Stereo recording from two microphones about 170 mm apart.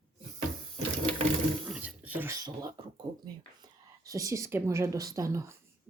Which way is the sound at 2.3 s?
20° right (ahead or behind).